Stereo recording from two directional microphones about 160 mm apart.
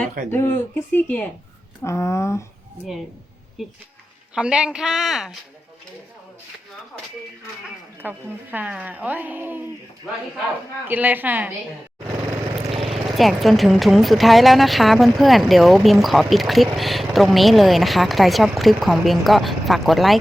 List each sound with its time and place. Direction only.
0.3 s speech: 15° left (ahead or behind)
4.4 s speech: 5° right (ahead or behind)
7.9 s a woman's voice: 10° right (ahead or behind)
10.8 s a woman's voice: 10° right (ahead or behind)
12.9 s speech: centre (ahead or behind)